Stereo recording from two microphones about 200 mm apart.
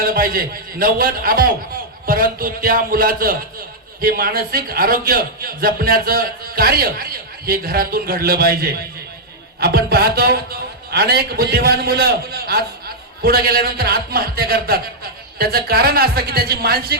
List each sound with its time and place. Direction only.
0.0 s a man's voice: 45° right (ahead or behind)